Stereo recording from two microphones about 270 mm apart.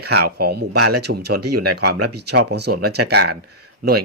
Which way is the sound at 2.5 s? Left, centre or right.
Right.